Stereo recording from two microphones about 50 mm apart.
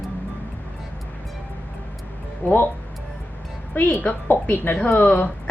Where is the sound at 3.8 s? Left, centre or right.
Left.